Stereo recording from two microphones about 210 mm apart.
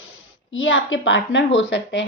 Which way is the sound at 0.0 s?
70° left (ahead or behind).